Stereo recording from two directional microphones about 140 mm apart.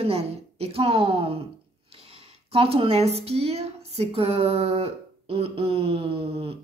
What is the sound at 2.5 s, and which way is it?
A woman's voice, 40° right (ahead or behind).